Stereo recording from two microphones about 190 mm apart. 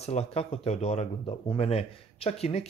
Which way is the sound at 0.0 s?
35° left (ahead or behind).